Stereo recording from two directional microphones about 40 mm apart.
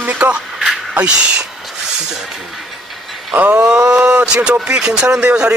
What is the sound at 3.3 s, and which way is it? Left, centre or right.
Speech, right.